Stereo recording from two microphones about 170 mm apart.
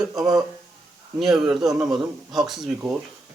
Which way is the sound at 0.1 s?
20° right (ahead or behind).